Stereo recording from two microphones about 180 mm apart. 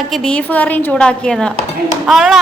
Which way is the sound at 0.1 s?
5° left (ahead or behind).